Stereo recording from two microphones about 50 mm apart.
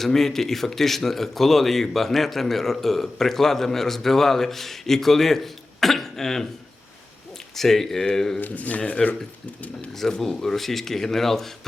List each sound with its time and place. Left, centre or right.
0.0 s speech: centre
7.5 s speech: centre
8.4 s speech: left
10.0 s speech: centre